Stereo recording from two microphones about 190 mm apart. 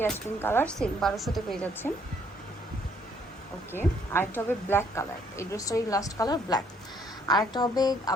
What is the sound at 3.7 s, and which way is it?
A woman's voice, 10° left (ahead or behind).